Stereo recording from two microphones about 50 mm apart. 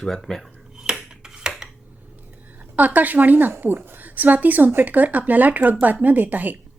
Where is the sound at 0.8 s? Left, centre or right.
Centre.